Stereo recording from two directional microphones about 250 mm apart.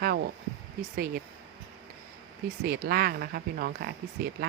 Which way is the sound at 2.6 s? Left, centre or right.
Right.